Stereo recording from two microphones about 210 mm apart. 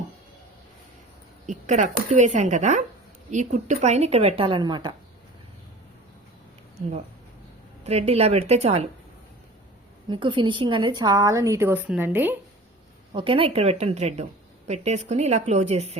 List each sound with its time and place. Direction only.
1.5 s a woman's voice: 35° right (ahead or behind)
7.9 s a woman's voice: 30° right (ahead or behind)
10.1 s a woman's voice: 20° right (ahead or behind)
13.1 s a woman's voice: 25° right (ahead or behind)